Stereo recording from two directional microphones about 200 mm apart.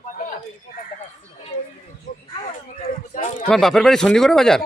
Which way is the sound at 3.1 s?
40° left (ahead or behind).